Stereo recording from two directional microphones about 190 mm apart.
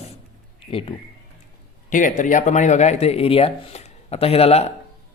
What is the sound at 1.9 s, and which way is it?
Speech, 45° left (ahead or behind).